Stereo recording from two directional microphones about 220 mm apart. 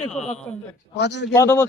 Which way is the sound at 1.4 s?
10° left (ahead or behind).